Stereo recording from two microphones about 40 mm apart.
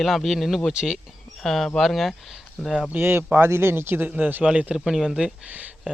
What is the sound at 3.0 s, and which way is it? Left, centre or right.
Speech, right.